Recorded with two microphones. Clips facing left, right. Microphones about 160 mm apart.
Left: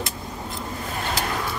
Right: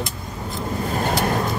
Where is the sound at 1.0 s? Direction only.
45° right (ahead or behind).